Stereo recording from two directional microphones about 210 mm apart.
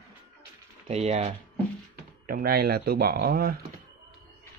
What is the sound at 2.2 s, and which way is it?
Speech, 45° right (ahead or behind).